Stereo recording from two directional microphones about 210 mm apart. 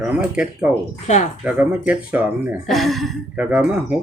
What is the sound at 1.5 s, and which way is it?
Speech, 5° right (ahead or behind).